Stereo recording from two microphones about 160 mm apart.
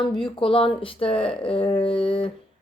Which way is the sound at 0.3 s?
35° left (ahead or behind).